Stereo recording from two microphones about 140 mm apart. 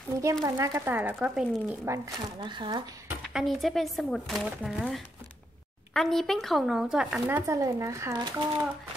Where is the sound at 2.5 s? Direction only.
35° right (ahead or behind).